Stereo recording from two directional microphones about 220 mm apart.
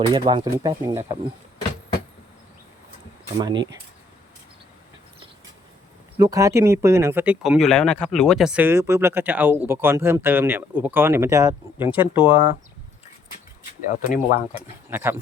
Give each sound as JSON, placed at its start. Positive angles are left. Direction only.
{"t": 0.0, "sound": "speech", "side_deg": -20}
{"t": 6.1, "sound": "speech", "side_deg": -15}
{"t": 13.8, "sound": "speech", "side_deg": 40}
{"t": 14.5, "sound": "speech", "side_deg": -10}